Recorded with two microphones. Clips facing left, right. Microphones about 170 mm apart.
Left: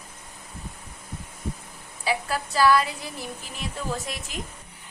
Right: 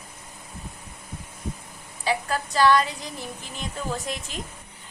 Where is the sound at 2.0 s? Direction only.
5° left (ahead or behind).